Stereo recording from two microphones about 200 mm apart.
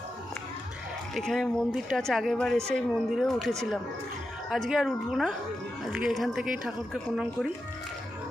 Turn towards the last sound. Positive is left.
turn(degrees=0)  # may be behind; listen again after turning